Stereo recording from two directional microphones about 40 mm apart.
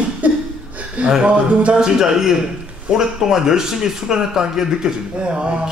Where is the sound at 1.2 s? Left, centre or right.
Right.